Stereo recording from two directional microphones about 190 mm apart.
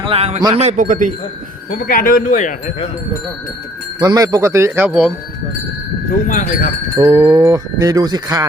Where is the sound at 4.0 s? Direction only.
20° right (ahead or behind).